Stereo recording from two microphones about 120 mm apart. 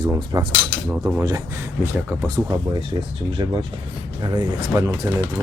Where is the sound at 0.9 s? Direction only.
20° right (ahead or behind).